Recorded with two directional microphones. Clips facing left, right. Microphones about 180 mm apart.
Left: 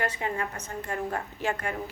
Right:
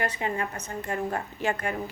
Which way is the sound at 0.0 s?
20° right (ahead or behind).